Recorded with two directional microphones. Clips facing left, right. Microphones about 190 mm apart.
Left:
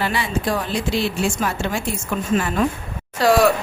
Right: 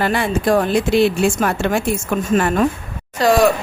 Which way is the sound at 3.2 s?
5° left (ahead or behind).